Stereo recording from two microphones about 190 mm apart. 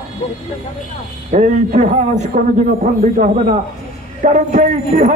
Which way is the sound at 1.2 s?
40° right (ahead or behind).